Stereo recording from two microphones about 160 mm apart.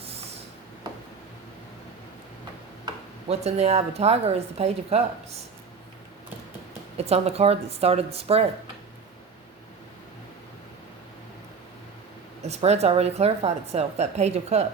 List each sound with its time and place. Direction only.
3.2 s a woman's voice: 40° right (ahead or behind)
6.9 s a woman's voice: 40° right (ahead or behind)
12.4 s a woman's voice: 40° right (ahead or behind)